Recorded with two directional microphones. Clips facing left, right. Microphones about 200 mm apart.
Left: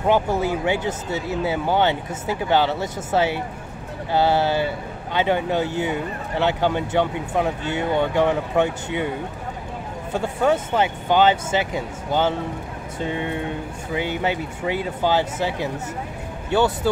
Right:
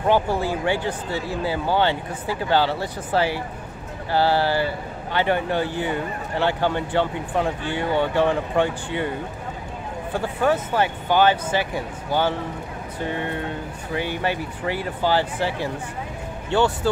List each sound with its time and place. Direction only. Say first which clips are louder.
0.0 s speech: left 1 dB; 20° left (ahead or behind)
10.4 s speech: left 1 dB; 20° left (ahead or behind)
16.8 s speech: left 1 dB; 15° left (ahead or behind)